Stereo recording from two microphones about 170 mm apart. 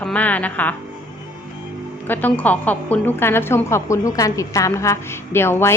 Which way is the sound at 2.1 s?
10° left (ahead or behind).